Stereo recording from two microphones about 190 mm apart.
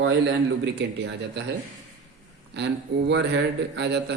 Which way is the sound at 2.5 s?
65° right (ahead or behind).